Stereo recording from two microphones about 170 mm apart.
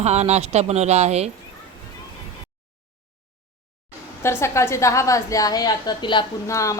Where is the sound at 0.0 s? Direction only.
40° right (ahead or behind).